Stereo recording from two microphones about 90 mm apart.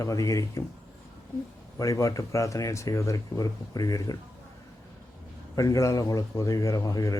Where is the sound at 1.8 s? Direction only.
35° left (ahead or behind).